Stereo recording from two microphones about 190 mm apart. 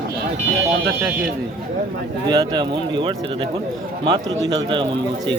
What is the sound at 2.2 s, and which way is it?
Speech, 25° right (ahead or behind).